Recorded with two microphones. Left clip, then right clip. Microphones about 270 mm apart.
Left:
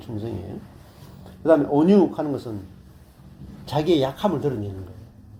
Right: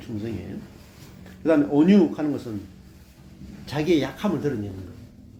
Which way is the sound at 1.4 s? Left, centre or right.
Centre.